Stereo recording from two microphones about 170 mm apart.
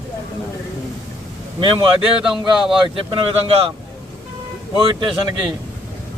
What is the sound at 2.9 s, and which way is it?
Speech, 30° right (ahead or behind).